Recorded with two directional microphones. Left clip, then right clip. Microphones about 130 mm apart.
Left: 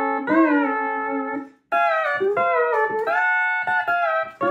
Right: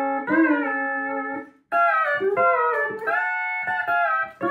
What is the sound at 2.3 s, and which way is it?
Music, 30° left (ahead or behind).